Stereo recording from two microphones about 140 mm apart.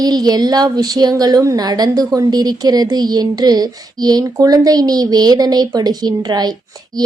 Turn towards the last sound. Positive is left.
turn(degrees=-30)  # may be behind; listen again after turning